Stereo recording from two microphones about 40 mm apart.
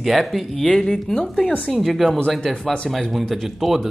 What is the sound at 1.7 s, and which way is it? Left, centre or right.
Speech, centre.